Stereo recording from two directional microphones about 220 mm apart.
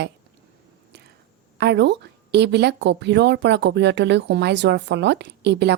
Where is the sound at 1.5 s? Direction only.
50° right (ahead or behind).